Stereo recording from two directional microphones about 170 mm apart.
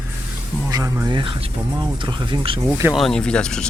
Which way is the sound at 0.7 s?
20° right (ahead or behind).